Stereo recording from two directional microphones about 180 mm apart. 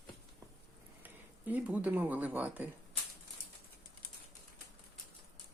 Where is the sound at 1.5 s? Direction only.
10° right (ahead or behind).